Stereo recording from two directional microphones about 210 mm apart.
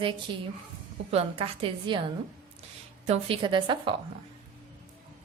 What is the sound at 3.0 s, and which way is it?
Speech, 30° right (ahead or behind).